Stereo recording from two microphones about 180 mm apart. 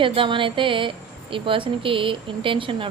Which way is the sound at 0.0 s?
30° right (ahead or behind).